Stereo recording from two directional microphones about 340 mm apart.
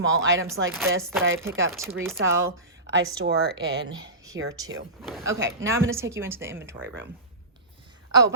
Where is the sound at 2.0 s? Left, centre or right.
Centre.